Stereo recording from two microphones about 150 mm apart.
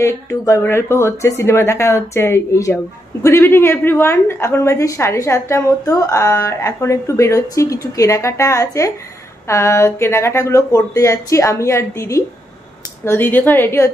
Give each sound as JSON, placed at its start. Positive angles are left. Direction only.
{"t": 0.0, "sound": "a woman's voice", "side_deg": 20}